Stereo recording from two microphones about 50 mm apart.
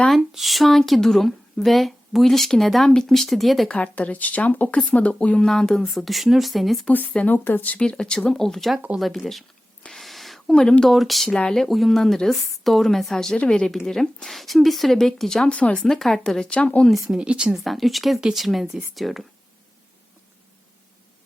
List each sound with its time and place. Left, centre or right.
0.3 s speech: centre
3.7 s speech: left
5.5 s speech: centre
6.8 s speech: left
7.6 s speech: left
8.3 s a woman's voice: centre
9.9 s a sound: centre
10.5 s a woman's voice: centre
10.8 s a woman's voice: centre
15.4 s speech: left
15.9 s a woman's voice: centre
16.4 s speech: left
17.2 s speech: centre
17.5 s speech: centre